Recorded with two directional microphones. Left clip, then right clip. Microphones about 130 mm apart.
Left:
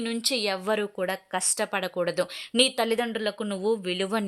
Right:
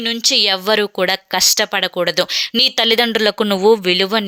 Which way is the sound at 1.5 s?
15° right (ahead or behind).